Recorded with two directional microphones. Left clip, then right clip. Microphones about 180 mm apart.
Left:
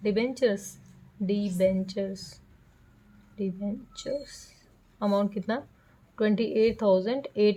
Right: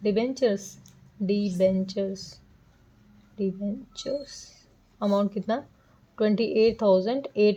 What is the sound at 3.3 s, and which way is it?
A woman's voice, 10° right (ahead or behind).